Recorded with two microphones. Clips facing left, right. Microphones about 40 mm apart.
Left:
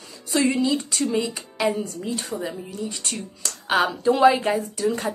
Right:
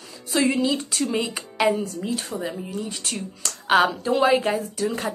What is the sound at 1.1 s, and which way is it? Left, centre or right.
Speech, right.